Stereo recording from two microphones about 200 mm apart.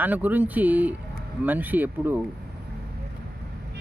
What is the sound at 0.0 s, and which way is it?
Speech, 10° right (ahead or behind).